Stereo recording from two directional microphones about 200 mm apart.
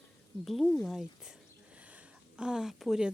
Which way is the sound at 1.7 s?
5° right (ahead or behind).